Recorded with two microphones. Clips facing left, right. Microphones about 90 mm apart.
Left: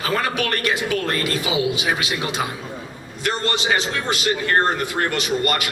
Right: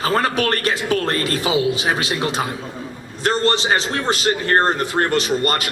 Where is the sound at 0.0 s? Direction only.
35° right (ahead or behind).